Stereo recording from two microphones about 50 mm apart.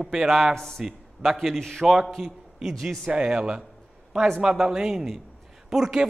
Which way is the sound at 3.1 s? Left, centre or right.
Centre.